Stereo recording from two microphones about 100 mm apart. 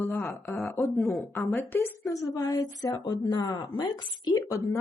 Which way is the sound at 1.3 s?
25° left (ahead or behind).